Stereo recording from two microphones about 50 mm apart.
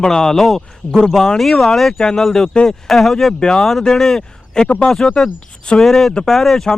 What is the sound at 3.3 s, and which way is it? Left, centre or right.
Speech, centre.